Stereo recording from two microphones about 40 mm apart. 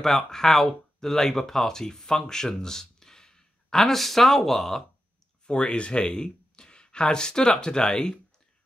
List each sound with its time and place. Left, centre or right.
0.0 s speech: centre
5.5 s speech: left